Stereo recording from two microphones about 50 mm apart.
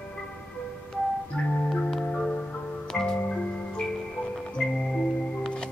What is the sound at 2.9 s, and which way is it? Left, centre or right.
Music, centre.